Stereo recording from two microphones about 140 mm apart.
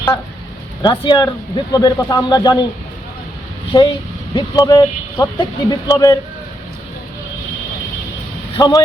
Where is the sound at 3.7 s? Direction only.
35° left (ahead or behind).